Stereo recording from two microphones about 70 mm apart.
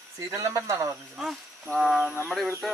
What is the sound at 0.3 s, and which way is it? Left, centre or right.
Speech, right.